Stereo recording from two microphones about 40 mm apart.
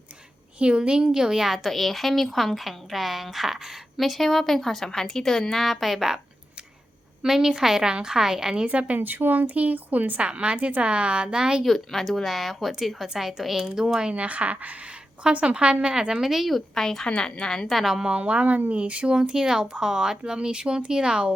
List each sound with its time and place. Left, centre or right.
0.6 s speech: right
1.2 s a woman's voice: centre
7.2 s a woman's voice: centre
8.6 s speech: right
9.0 s a woman's voice: right
10.2 s speech: right
11.6 s a woman's voice: centre
14.1 s speech: right; by 16.3 s centre
16.3 s a woman's voice: centre
16.7 s speech: centre
17.1 s speech: left
18.2 s speech: right